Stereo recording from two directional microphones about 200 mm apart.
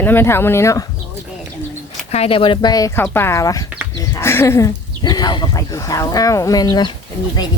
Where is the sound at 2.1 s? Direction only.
30° left (ahead or behind).